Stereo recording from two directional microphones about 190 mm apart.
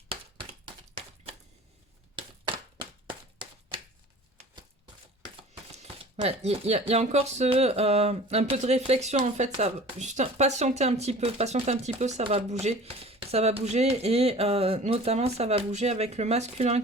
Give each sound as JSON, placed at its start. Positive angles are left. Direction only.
{"t": 0.9, "sound": "typewriter", "side_deg": -30}
{"t": 5.2, "sound": "speech", "side_deg": -25}